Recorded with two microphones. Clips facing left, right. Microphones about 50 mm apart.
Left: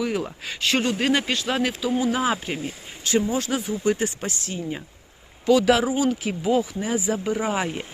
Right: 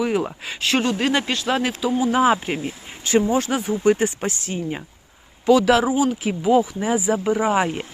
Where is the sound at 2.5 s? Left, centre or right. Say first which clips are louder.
Right 3 dB; right.